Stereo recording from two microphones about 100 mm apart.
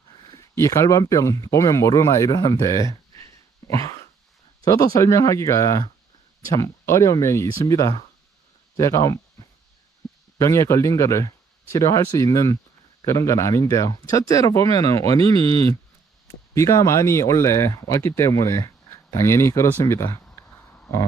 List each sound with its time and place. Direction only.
0.3 s speech: 30° left (ahead or behind)
3.7 s a sound: 35° left (ahead or behind)
4.6 s speech: 40° left (ahead or behind)
10.3 s speech: 35° left (ahead or behind)
15.4 s speech: 75° right (ahead or behind)
16.2 s speech: 30° left (ahead or behind)